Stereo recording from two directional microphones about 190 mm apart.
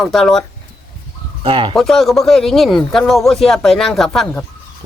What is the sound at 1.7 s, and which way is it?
Speech, centre (ahead or behind).